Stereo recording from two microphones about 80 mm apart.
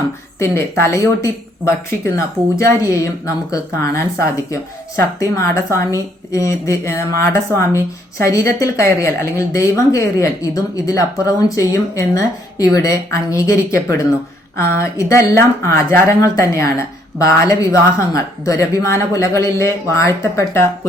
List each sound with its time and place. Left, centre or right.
0.3 s speech: left
16.3 s speech: left